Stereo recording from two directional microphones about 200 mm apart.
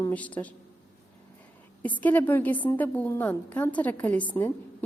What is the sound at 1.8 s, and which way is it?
A woman's voice, 10° left (ahead or behind).